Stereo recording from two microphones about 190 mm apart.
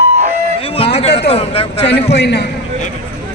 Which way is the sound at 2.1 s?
60° left (ahead or behind).